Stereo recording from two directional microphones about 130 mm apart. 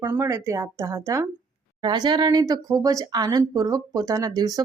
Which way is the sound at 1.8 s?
35° right (ahead or behind).